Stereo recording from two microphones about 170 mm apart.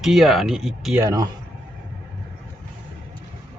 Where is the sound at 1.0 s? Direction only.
20° right (ahead or behind).